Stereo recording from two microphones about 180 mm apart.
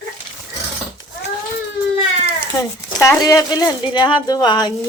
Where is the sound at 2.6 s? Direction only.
20° left (ahead or behind).